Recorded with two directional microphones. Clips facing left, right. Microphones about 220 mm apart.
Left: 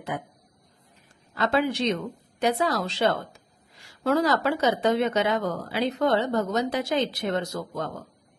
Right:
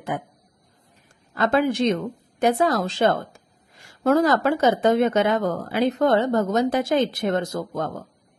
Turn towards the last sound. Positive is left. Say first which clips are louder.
# right 4 dB
turn(degrees=-50)  # may be behind; listen again after turning